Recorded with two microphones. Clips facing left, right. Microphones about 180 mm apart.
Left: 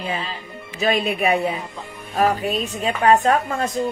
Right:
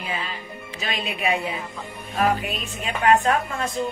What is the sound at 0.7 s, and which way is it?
A woman's voice, 40° left (ahead or behind).